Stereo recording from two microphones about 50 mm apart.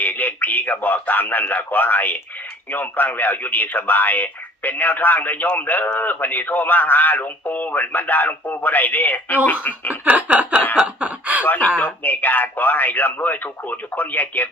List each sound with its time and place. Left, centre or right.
0.0 s speech: left
9.9 s a sound: right
10.8 s chuckle: right
11.4 s speech: left